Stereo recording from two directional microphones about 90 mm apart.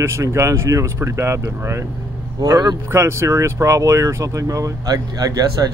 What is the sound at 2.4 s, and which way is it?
Speech, 50° right (ahead or behind).